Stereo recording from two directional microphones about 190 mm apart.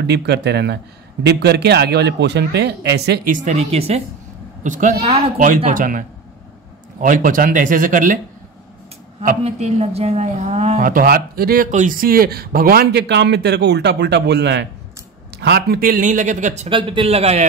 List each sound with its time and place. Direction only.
0.0 s a man's voice: 60° right (ahead or behind)
3.3 s speech: 35° right (ahead or behind)
9.2 s speech: 40° right (ahead or behind)
16.6 s a man's voice: 25° right (ahead or behind)